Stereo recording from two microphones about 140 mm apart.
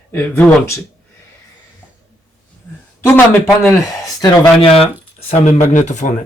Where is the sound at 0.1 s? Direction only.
15° left (ahead or behind).